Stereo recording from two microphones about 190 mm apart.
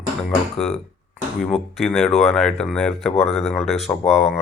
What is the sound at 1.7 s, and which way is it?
Speech, centre (ahead or behind).